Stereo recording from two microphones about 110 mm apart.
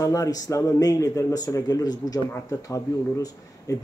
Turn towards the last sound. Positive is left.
turn(degrees=30)  # may be behind; listen again after turning